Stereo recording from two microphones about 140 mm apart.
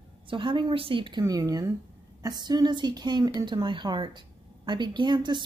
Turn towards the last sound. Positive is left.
turn(degrees=-30)  # may be behind; listen again after turning